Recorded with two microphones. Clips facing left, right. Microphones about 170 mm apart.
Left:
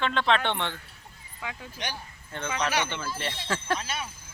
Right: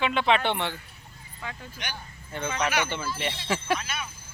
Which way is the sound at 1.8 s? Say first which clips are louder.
Left 3 dB; 35° left (ahead or behind).